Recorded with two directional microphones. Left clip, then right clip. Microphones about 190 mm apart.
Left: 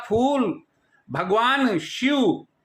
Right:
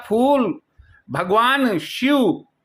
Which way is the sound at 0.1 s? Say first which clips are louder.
Right 4 dB; 30° right (ahead or behind).